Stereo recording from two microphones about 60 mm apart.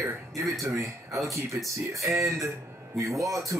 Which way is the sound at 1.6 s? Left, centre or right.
Right.